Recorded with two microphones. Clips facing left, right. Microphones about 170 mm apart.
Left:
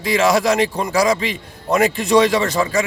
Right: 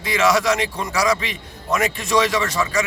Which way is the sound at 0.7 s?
35° left (ahead or behind).